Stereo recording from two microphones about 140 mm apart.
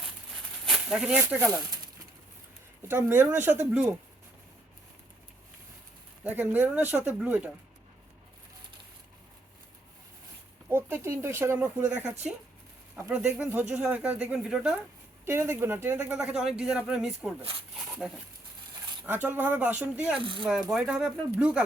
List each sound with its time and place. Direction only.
0.6 s a sound: 5° right (ahead or behind)
1.3 s speech: 15° right (ahead or behind)
2.8 s speech: 15° right (ahead or behind)
6.2 s speech: 15° right (ahead or behind)
10.7 s speech: 15° right (ahead or behind)
13.3 s speech: 10° right (ahead or behind)
15.2 s speech: 20° right (ahead or behind)
20.1 s speech: 35° right (ahead or behind)
20.4 s speech: 5° right (ahead or behind)